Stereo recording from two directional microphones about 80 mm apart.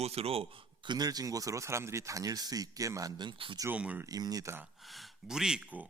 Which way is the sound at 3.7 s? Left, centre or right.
Centre.